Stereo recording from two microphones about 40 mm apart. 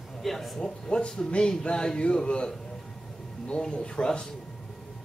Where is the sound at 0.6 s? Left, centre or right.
Left.